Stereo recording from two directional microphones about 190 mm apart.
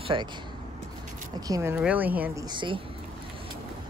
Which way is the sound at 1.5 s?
15° right (ahead or behind).